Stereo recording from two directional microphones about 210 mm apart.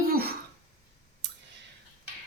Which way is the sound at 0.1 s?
45° right (ahead or behind).